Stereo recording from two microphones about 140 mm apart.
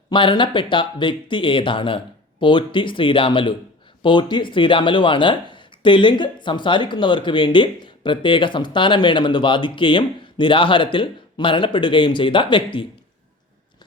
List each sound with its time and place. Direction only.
0.1 s speech: 35° left (ahead or behind)